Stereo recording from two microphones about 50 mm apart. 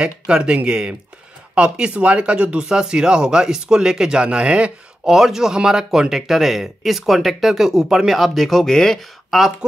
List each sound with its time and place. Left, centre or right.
0.0 s speech: centre
5.0 s speech: centre
9.3 s speech: centre